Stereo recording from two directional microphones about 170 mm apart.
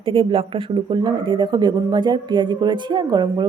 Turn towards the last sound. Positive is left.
turn(degrees=-25)  # may be behind; listen again after turning